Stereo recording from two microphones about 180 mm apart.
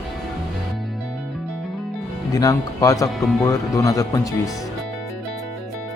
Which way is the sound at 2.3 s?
20° left (ahead or behind).